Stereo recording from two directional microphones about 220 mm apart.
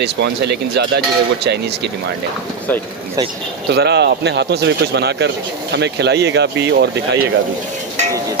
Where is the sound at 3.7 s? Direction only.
50° right (ahead or behind).